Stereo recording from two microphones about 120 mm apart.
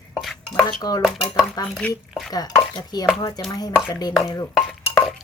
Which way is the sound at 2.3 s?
35° left (ahead or behind).